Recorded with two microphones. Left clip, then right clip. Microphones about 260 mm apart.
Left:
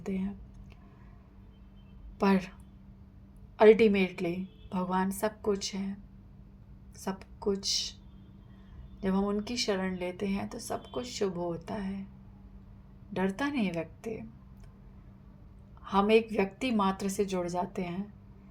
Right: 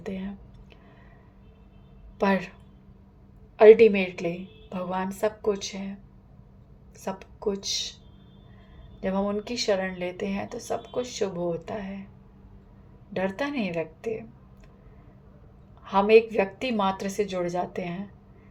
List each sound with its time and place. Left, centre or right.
0.0 s a sound: left
2.1 s a woman's voice: left
3.6 s speech: left
7.0 s speech: left
9.0 s speech: left
13.1 s speech: left
15.8 s speech: left